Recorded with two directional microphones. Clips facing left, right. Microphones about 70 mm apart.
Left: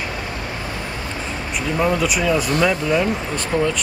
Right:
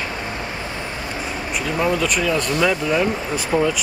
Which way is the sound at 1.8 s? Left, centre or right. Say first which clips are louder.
Left 1 dB; centre.